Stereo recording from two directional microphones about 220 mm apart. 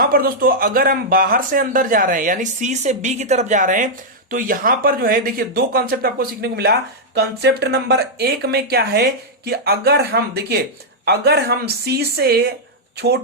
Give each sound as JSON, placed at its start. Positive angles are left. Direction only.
{"t": 0.0, "sound": "a man's voice", "side_deg": -40}